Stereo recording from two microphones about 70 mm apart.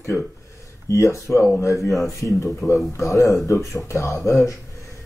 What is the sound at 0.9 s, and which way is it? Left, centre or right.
Speech, left.